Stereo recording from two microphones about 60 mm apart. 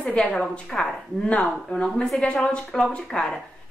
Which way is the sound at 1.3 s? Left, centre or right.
Left.